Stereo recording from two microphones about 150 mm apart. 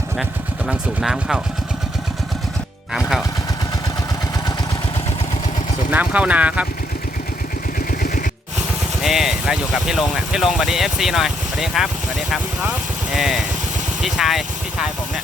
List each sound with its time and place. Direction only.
0.7 s speech: 5° right (ahead or behind)
5.9 s speech: 10° right (ahead or behind)
7.9 s a sound: 75° left (ahead or behind)
9.0 s speech: centre (ahead or behind)